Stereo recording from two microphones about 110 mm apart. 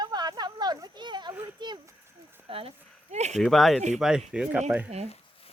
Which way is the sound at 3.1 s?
90° right.